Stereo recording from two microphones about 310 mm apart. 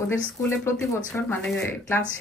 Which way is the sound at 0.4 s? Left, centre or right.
Centre.